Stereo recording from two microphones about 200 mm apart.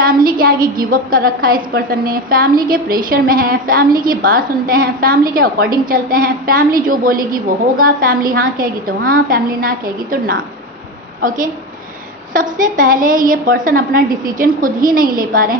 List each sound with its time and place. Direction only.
0.4 s a woman's voice: 45° right (ahead or behind)